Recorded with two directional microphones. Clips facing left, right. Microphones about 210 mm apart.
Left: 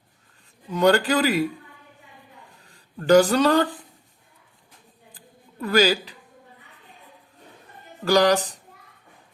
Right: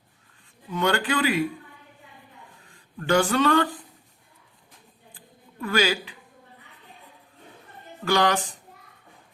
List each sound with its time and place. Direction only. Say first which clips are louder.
0.7 s speech: left 6 dB; 40° left (ahead or behind)
2.6 s speech: left 7 dB; 40° left (ahead or behind)
5.1 s a sound: left 2 dB; 40° left (ahead or behind)
8.0 s speech: left 4 dB; 40° left (ahead or behind)